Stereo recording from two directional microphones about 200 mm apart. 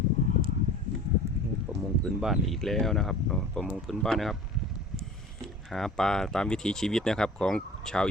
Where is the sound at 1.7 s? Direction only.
10° right (ahead or behind).